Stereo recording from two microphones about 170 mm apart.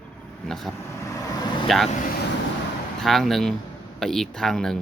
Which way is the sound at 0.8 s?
15° left (ahead or behind).